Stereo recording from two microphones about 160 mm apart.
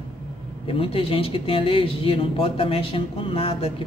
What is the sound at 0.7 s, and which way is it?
A woman's voice, 35° left (ahead or behind).